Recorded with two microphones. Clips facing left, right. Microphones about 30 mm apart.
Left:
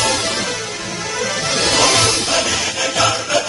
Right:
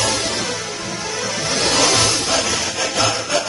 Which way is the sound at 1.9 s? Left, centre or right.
Centre.